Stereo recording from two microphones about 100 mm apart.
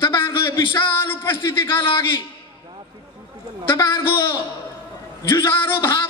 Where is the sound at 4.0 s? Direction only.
20° left (ahead or behind).